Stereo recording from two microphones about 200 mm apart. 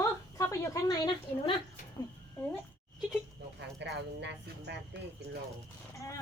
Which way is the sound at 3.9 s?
60° right (ahead or behind).